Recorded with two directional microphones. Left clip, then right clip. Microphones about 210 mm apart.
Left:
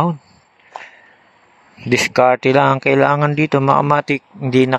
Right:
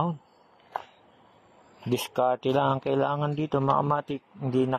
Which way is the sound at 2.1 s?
35° left (ahead or behind).